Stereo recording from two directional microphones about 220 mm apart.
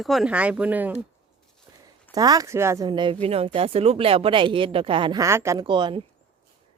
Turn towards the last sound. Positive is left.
turn(degrees=-20)  # may be behind; listen again after turning